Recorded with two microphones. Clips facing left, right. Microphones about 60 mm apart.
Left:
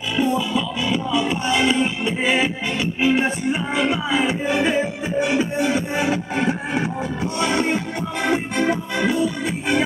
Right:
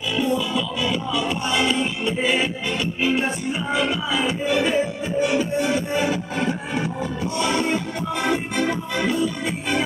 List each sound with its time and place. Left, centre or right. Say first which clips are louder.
0.2 s music: left 3 dB; centre